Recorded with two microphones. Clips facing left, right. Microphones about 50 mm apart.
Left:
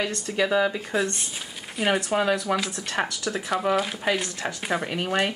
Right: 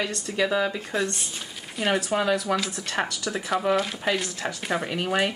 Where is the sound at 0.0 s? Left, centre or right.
Centre.